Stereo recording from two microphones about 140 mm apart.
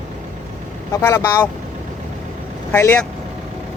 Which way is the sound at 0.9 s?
15° left (ahead or behind).